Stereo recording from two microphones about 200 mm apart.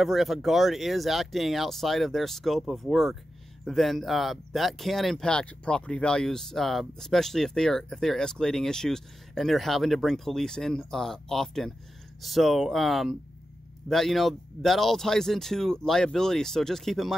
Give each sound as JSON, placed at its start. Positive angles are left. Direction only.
{"t": 0.0, "sound": "speech", "side_deg": 0}